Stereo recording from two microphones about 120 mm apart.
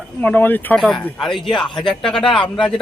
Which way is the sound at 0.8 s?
Centre (ahead or behind).